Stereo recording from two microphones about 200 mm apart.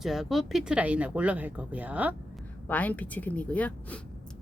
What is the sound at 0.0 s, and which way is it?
Speech, centre (ahead or behind).